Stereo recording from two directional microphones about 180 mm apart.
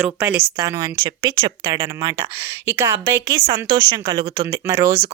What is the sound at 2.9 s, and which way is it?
Speech, 30° right (ahead or behind).